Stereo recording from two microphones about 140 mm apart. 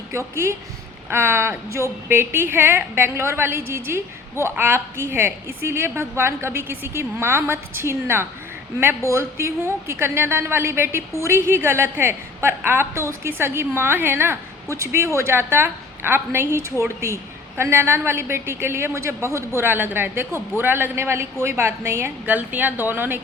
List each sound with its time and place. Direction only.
0.1 s a woman's voice: 20° right (ahead or behind)